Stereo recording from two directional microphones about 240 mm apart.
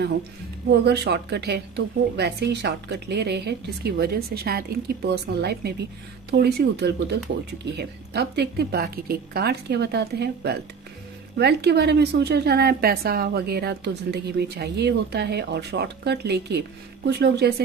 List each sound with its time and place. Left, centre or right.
0.7 s a woman's voice: right